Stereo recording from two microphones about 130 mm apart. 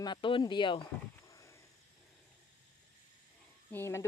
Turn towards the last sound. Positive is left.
turn(degrees=20)  # may be behind; listen again after turning